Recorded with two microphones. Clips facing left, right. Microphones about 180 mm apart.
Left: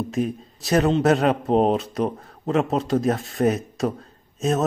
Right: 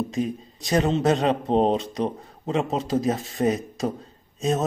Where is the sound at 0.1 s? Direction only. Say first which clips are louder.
Left 2 dB; centre (ahead or behind).